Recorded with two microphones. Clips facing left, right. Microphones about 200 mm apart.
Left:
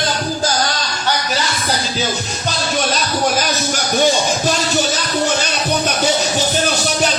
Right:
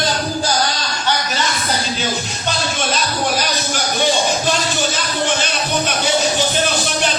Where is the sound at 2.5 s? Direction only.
45° left (ahead or behind).